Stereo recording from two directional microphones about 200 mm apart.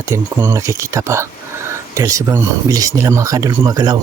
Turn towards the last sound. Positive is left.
turn(degrees=-20)  # may be behind; listen again after turning